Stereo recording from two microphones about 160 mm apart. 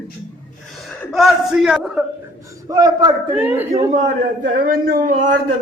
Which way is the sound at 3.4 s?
10° right (ahead or behind).